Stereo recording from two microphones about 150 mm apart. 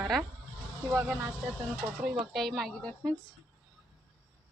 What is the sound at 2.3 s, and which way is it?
Speech, centre (ahead or behind).